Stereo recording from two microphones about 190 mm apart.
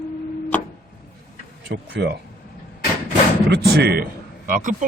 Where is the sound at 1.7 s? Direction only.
65° right (ahead or behind).